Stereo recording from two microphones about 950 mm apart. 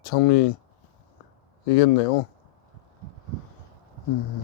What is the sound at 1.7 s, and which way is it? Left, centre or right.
Speech, left.